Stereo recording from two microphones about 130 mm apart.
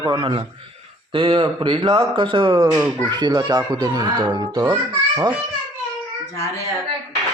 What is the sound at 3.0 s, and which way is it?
A child's voice, 35° right (ahead or behind).